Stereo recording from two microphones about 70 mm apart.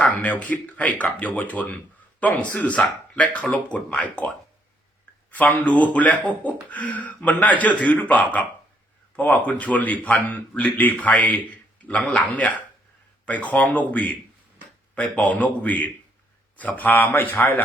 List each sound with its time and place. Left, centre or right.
0.0 s speech: centre
5.3 s speech: left